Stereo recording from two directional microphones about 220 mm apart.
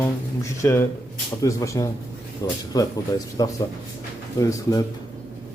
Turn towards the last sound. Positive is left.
turn(degrees=15)  # may be behind; listen again after turning